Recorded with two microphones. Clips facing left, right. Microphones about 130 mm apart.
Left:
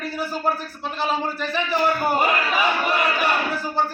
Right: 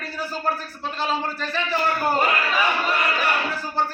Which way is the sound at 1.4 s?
15° left (ahead or behind).